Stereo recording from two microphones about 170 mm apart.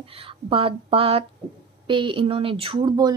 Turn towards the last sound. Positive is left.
turn(degrees=-25)  # may be behind; listen again after turning